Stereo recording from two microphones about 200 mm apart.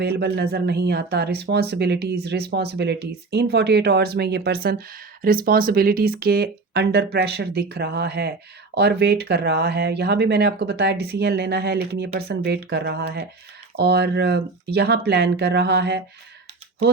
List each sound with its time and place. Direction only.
0.0 s speech: 55° right (ahead or behind)